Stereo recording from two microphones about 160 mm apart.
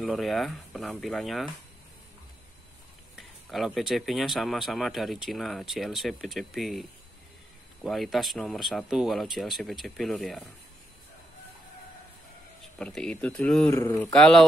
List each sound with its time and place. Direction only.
0.0 s speech: centre (ahead or behind)
3.2 s speech: centre (ahead or behind)
12.7 s speech: 5° left (ahead or behind)
13.7 s speech: 15° left (ahead or behind)
14.0 s speech: 5° left (ahead or behind)